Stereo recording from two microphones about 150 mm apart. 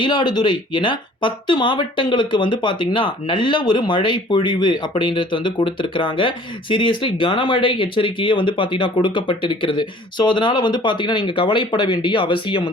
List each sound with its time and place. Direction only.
0.0 s speech: 30° left (ahead or behind)